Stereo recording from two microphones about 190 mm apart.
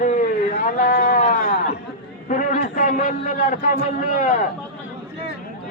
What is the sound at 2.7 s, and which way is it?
Speech, 45° left (ahead or behind).